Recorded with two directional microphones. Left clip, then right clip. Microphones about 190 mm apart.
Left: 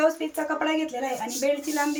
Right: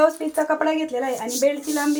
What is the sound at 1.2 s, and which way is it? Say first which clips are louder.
Speech: right 4 dB; 25° right (ahead or behind).